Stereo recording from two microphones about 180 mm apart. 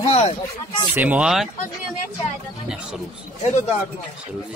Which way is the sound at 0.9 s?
10° right (ahead or behind).